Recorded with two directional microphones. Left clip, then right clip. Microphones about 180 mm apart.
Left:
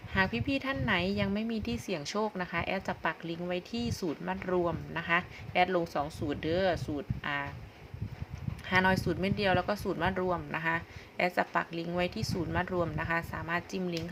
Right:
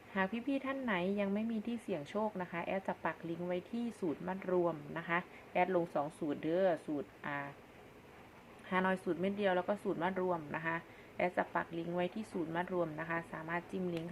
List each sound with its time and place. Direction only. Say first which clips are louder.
0.1 s a woman's voice: left 6 dB; 20° left (ahead or behind)
8.6 s a woman's voice: left 7 dB; 25° left (ahead or behind)